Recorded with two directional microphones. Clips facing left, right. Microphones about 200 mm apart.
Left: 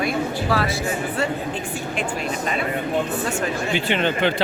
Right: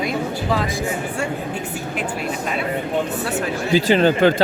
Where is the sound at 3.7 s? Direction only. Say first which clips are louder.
Right 10 dB; 35° right (ahead or behind).